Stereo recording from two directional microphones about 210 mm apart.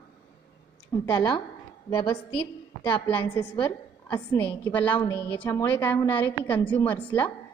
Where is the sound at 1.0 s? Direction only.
20° left (ahead or behind).